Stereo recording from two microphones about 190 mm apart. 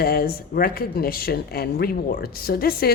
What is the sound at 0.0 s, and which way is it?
A woman's voice, 55° left (ahead or behind).